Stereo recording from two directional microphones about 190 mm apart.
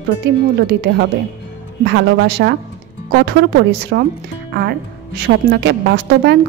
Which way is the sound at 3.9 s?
60° right (ahead or behind).